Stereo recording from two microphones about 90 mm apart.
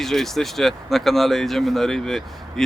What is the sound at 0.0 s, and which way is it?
Speech, 5° left (ahead or behind).